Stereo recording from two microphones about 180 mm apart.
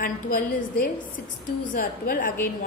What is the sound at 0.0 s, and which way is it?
A woman's voice, 50° left (ahead or behind).